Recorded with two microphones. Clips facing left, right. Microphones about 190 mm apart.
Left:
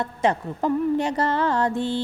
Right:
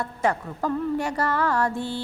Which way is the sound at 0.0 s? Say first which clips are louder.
Left 2 dB; 20° left (ahead or behind).